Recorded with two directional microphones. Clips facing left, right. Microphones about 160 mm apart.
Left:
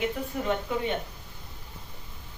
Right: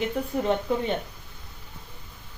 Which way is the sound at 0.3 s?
35° right (ahead or behind).